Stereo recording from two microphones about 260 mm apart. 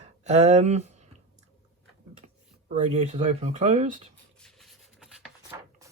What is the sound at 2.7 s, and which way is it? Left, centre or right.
Speech, right.